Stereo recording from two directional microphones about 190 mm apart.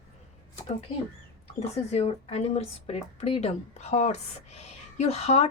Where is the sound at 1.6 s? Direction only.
35° left (ahead or behind).